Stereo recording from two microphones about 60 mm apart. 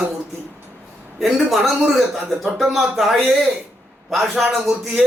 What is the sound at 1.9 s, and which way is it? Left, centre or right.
A man's voice, centre.